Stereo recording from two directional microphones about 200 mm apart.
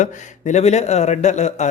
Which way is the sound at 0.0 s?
35° left (ahead or behind).